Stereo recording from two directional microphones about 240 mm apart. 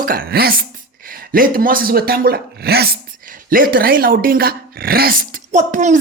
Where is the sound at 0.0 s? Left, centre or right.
Right.